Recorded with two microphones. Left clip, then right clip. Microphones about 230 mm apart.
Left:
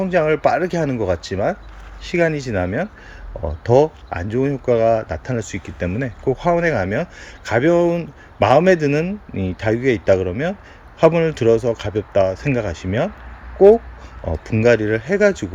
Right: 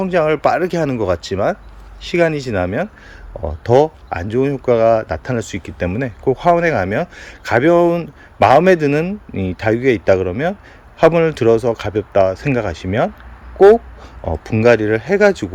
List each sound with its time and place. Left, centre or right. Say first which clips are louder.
0.0 s speech: right 2 dB; centre
14.3 s speech: right 3 dB; centre